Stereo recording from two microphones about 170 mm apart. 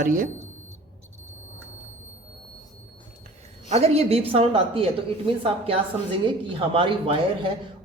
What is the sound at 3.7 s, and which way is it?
A woman's voice, 40° right (ahead or behind).